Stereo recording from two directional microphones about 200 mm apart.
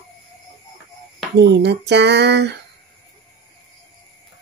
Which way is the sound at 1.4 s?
60° right (ahead or behind).